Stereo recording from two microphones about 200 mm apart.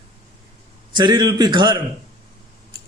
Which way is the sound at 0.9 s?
20° right (ahead or behind).